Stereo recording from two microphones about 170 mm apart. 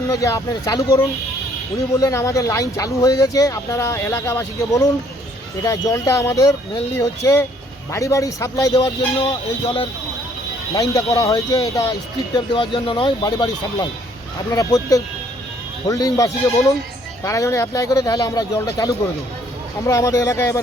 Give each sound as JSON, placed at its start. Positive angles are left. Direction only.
{"t": 0.1, "sound": "speech", "side_deg": 20}
{"t": 9.2, "sound": "speech", "side_deg": 35}
{"t": 10.8, "sound": "speech", "side_deg": 20}
{"t": 19.8, "sound": "speech", "side_deg": 20}